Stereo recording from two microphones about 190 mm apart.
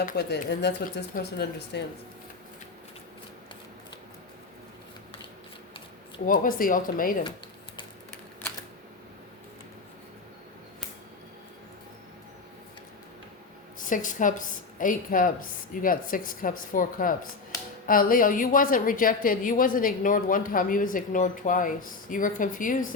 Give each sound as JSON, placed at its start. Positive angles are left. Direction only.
{"t": 0.0, "sound": "speech", "side_deg": 55}
{"t": 6.2, "sound": "a woman's voice", "side_deg": 45}
{"t": 13.7, "sound": "a woman's voice", "side_deg": 45}